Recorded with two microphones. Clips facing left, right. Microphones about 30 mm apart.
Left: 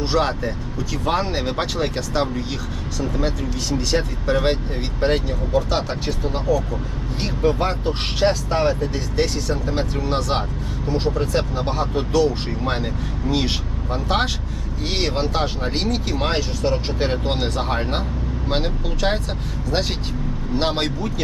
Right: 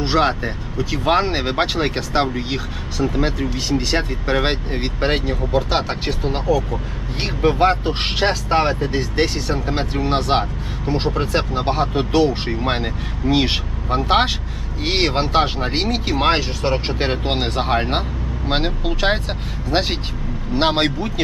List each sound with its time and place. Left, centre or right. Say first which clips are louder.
0.0 s speech: right 3 dB; right